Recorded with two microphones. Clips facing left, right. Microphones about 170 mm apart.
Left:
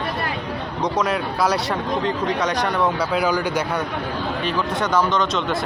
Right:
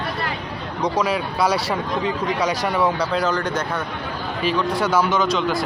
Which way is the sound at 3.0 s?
5° left (ahead or behind).